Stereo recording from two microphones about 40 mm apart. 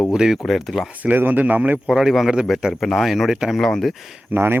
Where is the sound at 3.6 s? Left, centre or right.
Centre.